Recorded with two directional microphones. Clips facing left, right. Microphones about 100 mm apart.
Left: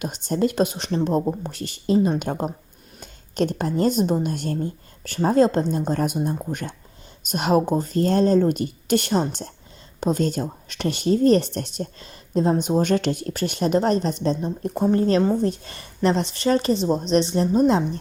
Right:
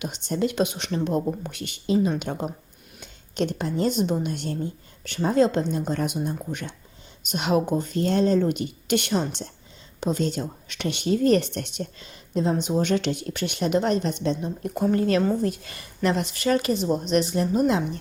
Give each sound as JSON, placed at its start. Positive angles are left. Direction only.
{"t": 0.0, "sound": "a woman's voice", "side_deg": 45}